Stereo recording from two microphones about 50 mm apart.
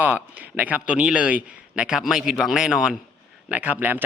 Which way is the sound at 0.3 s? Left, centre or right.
Right.